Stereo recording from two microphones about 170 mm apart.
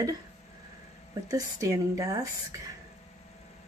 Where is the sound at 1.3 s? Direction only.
20° right (ahead or behind).